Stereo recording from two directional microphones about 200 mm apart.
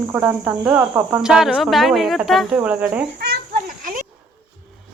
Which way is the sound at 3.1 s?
50° right (ahead or behind).